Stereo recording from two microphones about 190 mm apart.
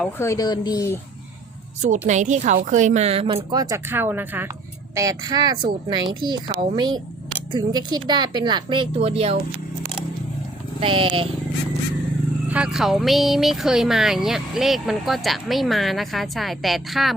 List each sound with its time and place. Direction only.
0.0 s speech: 15° left (ahead or behind)
1.8 s a woman's voice: 40° right (ahead or behind)
10.8 s a woman's voice: 25° right (ahead or behind)
12.5 s speech: 5° right (ahead or behind)